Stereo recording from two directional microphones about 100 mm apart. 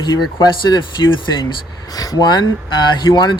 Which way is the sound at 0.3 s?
45° left (ahead or behind).